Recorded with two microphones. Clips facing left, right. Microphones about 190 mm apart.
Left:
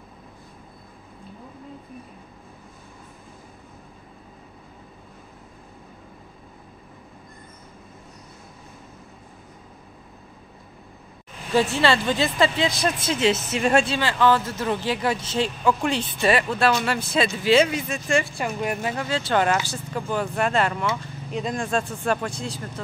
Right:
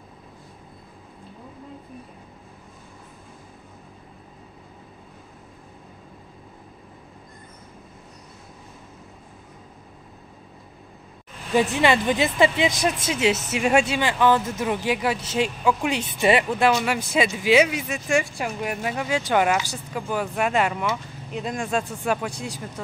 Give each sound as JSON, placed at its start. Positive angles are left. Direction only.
{"t": 11.5, "sound": "speech", "side_deg": -15}
{"t": 16.2, "sound": "speech", "side_deg": -20}